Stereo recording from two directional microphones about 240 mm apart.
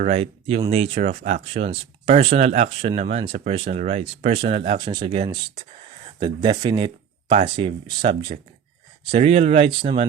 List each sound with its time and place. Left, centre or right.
0.0 s speech: right